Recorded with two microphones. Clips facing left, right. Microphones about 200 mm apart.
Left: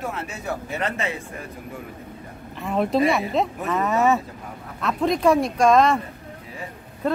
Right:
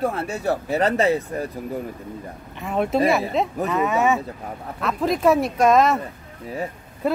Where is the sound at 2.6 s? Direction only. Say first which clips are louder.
Even; centre (ahead or behind).